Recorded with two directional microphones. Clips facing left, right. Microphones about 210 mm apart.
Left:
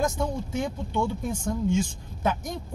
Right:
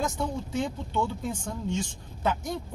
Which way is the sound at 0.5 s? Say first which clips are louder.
Left 1 dB; 10° left (ahead or behind).